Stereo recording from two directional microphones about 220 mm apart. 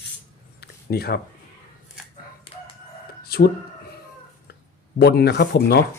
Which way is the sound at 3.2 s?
45° left (ahead or behind).